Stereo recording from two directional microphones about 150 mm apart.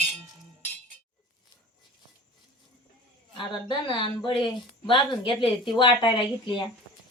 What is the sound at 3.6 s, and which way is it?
A woman's voice, 35° left (ahead or behind).